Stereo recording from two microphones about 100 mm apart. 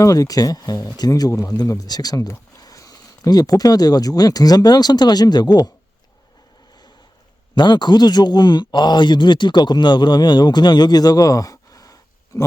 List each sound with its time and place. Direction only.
0.0 s a man's voice: 35° left (ahead or behind)
7.5 s speech: 50° left (ahead or behind)